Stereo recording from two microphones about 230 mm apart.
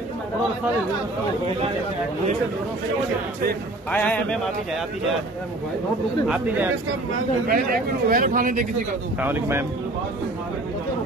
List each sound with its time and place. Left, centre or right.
3.9 s speech: centre
6.2 s speech: centre
7.4 s speech: right
9.2 s speech: centre